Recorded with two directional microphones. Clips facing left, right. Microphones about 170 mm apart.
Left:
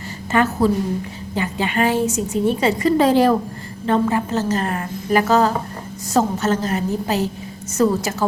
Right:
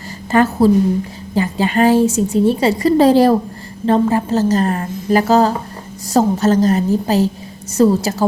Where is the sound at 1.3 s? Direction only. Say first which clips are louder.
Right 5 dB; 35° right (ahead or behind).